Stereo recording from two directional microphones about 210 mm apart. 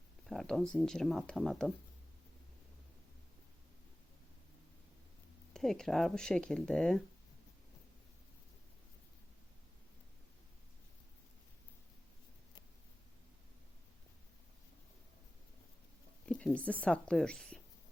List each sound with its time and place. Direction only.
0.3 s speech: centre (ahead or behind)
5.5 s speech: centre (ahead or behind)
16.3 s speech: 5° left (ahead or behind)